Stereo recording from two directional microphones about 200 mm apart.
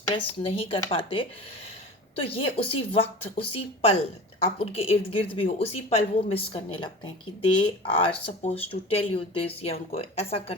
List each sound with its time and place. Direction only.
0.1 s a woman's voice: 25° left (ahead or behind)